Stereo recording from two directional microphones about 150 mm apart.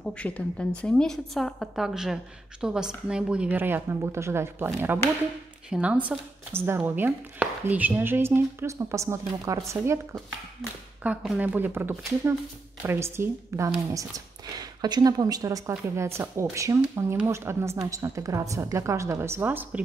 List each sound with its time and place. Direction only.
0.0 s a woman's voice: 10° left (ahead or behind); by 9.8 s 20° right (ahead or behind)
11.0 s speech: 10° right (ahead or behind)